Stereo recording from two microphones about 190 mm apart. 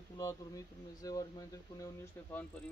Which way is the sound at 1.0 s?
20° left (ahead or behind).